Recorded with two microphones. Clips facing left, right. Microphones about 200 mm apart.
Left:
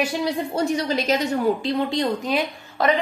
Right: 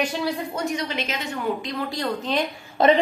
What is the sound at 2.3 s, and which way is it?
Speech, 10° left (ahead or behind).